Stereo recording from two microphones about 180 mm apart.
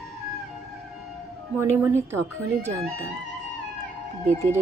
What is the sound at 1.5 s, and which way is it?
Speech, 15° right (ahead or behind).